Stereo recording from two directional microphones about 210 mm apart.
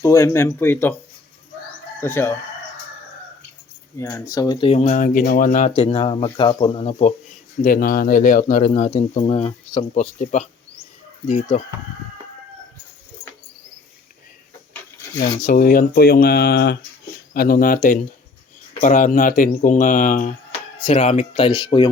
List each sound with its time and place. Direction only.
0.0 s speech: 15° left (ahead or behind)
2.0 s speech: 10° left (ahead or behind)
3.9 s speech: 10° left (ahead or behind); by 7.1 s 30° left (ahead or behind)
7.6 s speech: 45° left (ahead or behind)
15.2 s speech: 40° left (ahead or behind)
20.8 s speech: 30° left (ahead or behind)